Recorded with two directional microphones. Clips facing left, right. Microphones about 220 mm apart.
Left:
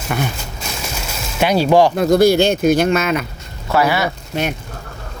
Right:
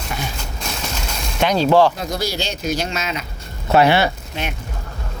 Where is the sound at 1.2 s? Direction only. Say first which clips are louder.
Left 2 dB; 10° left (ahead or behind).